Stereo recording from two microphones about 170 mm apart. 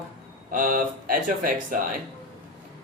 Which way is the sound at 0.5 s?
55° right (ahead or behind).